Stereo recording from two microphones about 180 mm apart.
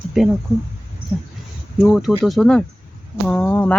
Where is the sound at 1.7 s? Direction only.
Centre (ahead or behind).